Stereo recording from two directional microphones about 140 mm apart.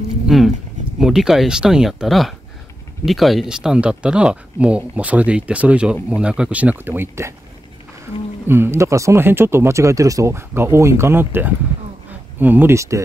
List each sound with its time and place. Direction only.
0.3 s speech: centre (ahead or behind); by 7.3 s 15° right (ahead or behind)
8.5 s speech: 15° right (ahead or behind)